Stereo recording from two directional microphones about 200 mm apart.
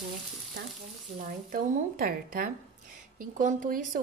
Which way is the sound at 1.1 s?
45° right (ahead or behind).